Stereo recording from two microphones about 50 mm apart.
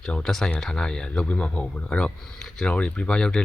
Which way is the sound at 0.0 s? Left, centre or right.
Centre.